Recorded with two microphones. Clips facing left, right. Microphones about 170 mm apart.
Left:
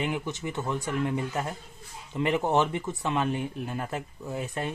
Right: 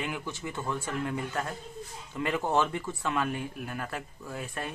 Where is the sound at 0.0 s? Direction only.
20° left (ahead or behind).